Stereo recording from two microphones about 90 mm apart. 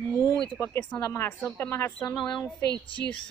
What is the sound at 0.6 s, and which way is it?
Speech, 20° left (ahead or behind).